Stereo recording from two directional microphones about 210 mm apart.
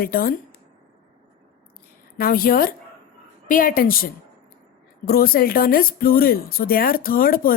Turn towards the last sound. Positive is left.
turn(degrees=45)  # may be behind; listen again after turning